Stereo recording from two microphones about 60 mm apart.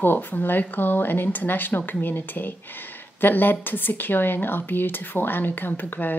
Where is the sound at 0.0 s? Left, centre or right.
Left.